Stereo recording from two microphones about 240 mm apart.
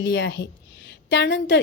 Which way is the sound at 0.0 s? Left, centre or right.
Left.